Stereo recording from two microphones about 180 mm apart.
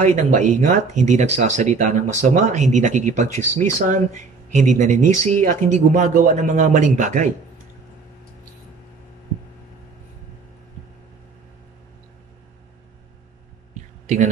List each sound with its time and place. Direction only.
0.0 s speech: 45° right (ahead or behind)
14.0 s speech: 45° right (ahead or behind)